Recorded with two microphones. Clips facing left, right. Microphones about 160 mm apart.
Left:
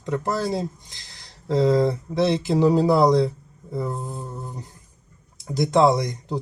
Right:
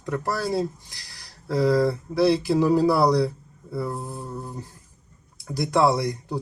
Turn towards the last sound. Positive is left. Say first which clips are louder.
# left 1 dB
turn(degrees=20)  # may be behind; listen again after turning